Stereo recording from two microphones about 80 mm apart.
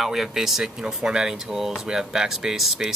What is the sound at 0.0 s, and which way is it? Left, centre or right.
Speech, centre.